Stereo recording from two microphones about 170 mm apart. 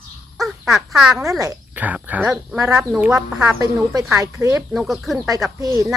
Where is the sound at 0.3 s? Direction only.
Centre (ahead or behind).